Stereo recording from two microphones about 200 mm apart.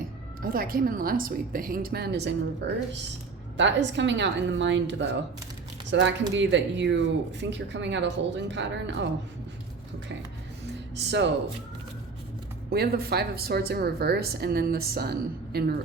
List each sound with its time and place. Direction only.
0.4 s a woman's voice: 45° right (ahead or behind); by 9.0 s 65° right (ahead or behind)
10.9 s speech: 60° right (ahead or behind)
12.7 s a woman's voice: 50° right (ahead or behind)